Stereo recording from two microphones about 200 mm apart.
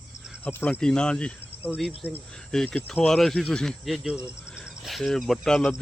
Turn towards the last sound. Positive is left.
turn(degrees=5)  # may be behind; listen again after turning